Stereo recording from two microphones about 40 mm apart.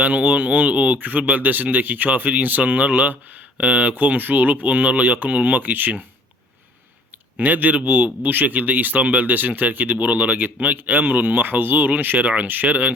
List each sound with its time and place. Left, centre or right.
0.0 s a man's voice: right
7.3 s a man's voice: right